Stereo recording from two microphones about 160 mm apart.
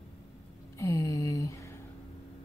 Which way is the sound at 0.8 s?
20° left (ahead or behind).